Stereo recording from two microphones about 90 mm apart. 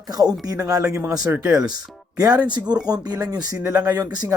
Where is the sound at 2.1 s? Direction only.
40° right (ahead or behind).